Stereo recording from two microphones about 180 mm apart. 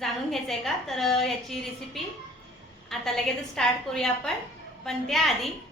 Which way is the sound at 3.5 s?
5° left (ahead or behind).